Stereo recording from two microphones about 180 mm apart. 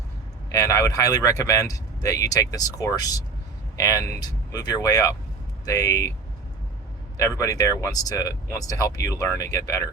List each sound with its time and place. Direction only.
0.5 s speech: 15° left (ahead or behind)
7.2 s speech: 15° left (ahead or behind)